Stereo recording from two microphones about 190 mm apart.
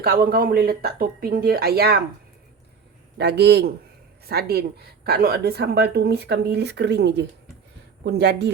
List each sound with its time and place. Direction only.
0.0 s speech: 50° right (ahead or behind)
3.2 s a woman's voice: 60° right (ahead or behind)